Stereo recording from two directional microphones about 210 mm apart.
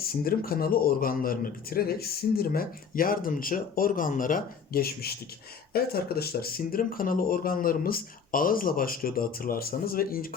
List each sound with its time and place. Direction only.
0.0 s speech: 45° left (ahead or behind)